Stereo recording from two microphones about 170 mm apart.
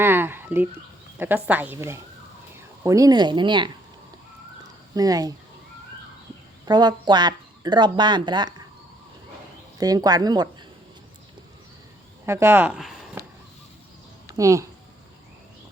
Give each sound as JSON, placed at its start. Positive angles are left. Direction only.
{"t": 0.0, "sound": "a sound", "side_deg": -10}
{"t": 1.2, "sound": "a woman's voice", "side_deg": -10}
{"t": 4.9, "sound": "speech", "side_deg": -20}
{"t": 6.7, "sound": "speech", "side_deg": -25}
{"t": 9.7, "sound": "speech", "side_deg": -20}
{"t": 12.2, "sound": "speech", "side_deg": -15}
{"t": 14.3, "sound": "speech", "side_deg": -20}